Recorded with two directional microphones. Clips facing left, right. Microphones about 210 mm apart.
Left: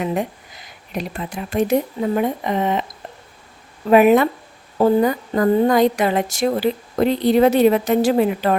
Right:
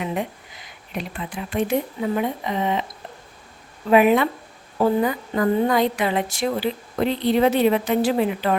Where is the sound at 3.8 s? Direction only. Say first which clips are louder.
Left 4 dB; 45° left (ahead or behind).